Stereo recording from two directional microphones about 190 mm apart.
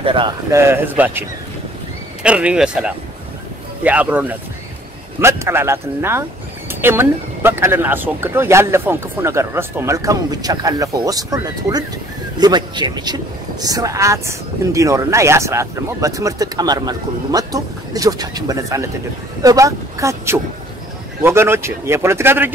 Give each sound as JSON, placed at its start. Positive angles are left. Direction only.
{"t": 0.0, "sound": "speech", "side_deg": -25}
{"t": 0.5, "sound": "speech", "side_deg": -15}
{"t": 2.2, "sound": "speech", "side_deg": -5}